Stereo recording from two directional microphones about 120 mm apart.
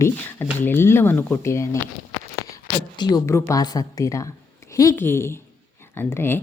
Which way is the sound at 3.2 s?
20° left (ahead or behind).